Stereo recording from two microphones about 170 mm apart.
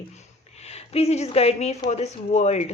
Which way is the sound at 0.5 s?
40° left (ahead or behind).